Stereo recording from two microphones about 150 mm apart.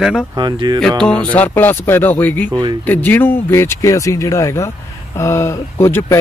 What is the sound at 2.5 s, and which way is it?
Speech, 30° right (ahead or behind).